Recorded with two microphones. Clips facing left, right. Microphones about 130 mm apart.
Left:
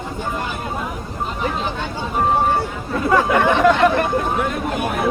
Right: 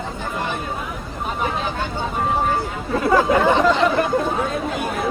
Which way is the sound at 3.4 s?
60° left (ahead or behind).